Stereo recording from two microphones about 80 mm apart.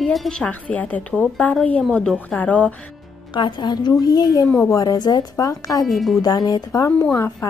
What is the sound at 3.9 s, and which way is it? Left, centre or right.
A woman's voice, left.